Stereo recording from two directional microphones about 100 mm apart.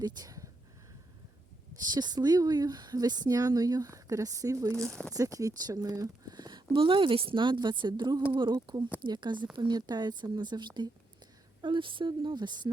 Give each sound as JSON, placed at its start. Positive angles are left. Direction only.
{"t": 0.0, "sound": "a sound", "side_deg": -40}
{"t": 1.9, "sound": "speech", "side_deg": -45}
{"t": 4.9, "sound": "speech", "side_deg": 10}
{"t": 5.1, "sound": "speech", "side_deg": -35}